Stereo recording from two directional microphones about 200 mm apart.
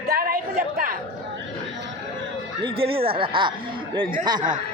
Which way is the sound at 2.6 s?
25° right (ahead or behind).